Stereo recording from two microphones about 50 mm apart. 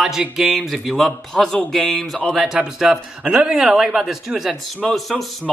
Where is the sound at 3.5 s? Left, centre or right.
Centre.